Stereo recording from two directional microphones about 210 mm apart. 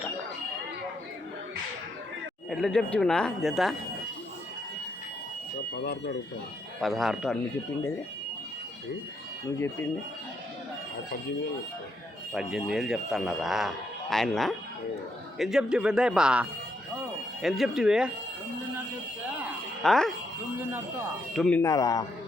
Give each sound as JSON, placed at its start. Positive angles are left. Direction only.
{"t": 2.5, "sound": "speech", "side_deg": 0}
{"t": 5.8, "sound": "speech", "side_deg": 50}
{"t": 6.7, "sound": "speech", "side_deg": 0}
{"t": 12.3, "sound": "speech", "side_deg": 0}
{"t": 19.8, "sound": "speech", "side_deg": 0}
{"t": 21.3, "sound": "speech", "side_deg": 5}
{"t": 21.6, "sound": "a man's voice", "side_deg": 15}